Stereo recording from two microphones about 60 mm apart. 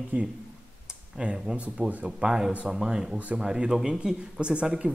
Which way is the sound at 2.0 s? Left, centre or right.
Centre.